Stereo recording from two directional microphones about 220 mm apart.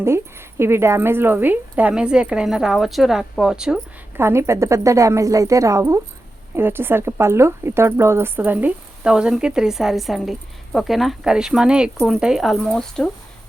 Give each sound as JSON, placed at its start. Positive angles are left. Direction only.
{"t": 0.6, "sound": "a woman's voice", "side_deg": -10}